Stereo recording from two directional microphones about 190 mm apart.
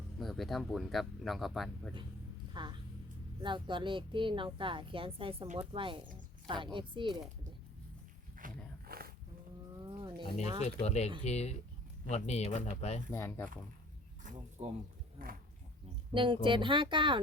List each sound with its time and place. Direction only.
0.2 s speech: centre (ahead or behind)
2.5 s a sound: 25° right (ahead or behind)
3.4 s a woman's voice: 25° right (ahead or behind)
8.4 s wild animals: 45° right (ahead or behind)
8.9 s roaring cats: 50° right (ahead or behind)
9.9 s a sound: 25° right (ahead or behind)
10.6 s speech: 35° left (ahead or behind)
13.1 s speech: 15° left (ahead or behind)
14.3 s a sound: 40° right (ahead or behind)
16.1 s a woman's voice: 25° right (ahead or behind)